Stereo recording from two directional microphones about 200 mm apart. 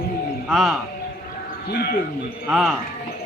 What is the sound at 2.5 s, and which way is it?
Speech, centre (ahead or behind).